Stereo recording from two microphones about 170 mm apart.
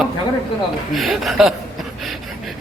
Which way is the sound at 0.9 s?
Centre (ahead or behind).